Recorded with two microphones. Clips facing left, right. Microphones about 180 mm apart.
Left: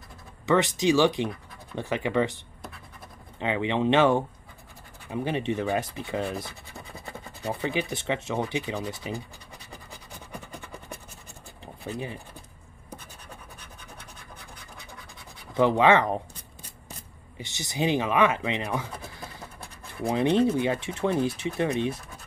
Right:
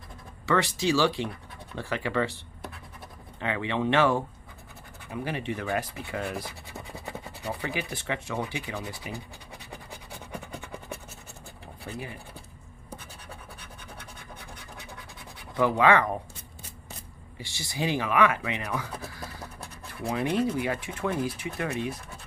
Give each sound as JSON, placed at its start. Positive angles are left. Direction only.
{"t": 0.5, "sound": "speech", "side_deg": 20}
{"t": 3.3, "sound": "speech", "side_deg": 20}
{"t": 7.6, "sound": "speech", "side_deg": 20}
{"t": 15.5, "sound": "speech", "side_deg": 25}
{"t": 17.4, "sound": "speech", "side_deg": 20}
{"t": 20.1, "sound": "speech", "side_deg": 25}